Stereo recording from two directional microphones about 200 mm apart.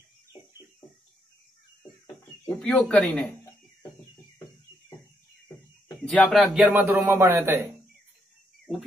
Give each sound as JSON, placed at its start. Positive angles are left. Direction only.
{"t": 2.4, "sound": "speech", "side_deg": 10}
{"t": 6.0, "sound": "speech", "side_deg": 5}
{"t": 6.5, "sound": "speech", "side_deg": -10}